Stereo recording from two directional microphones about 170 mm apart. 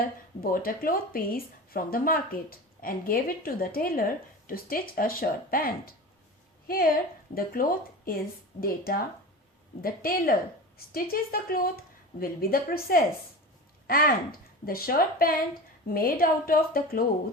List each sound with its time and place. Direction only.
0.0 s a woman's voice: 55° left (ahead or behind)